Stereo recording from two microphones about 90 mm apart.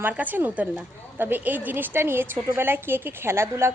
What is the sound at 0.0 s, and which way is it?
A woman's voice, 20° right (ahead or behind).